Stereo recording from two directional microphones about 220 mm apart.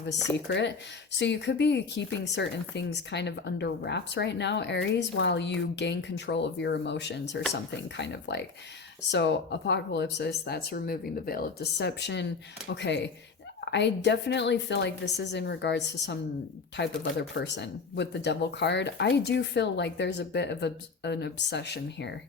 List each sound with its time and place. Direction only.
0.3 s speech: 50° left (ahead or behind)